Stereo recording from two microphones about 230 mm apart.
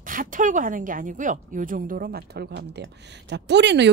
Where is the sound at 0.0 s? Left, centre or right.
Right.